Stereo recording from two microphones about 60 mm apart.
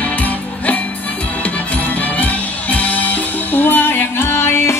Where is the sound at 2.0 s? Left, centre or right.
Left.